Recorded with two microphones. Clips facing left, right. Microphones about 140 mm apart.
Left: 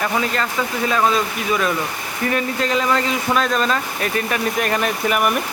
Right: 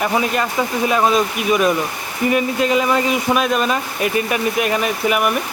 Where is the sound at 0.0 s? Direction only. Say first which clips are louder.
Right 3 dB; 15° right (ahead or behind).